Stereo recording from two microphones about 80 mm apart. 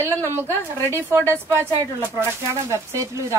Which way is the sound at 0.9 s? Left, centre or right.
Right.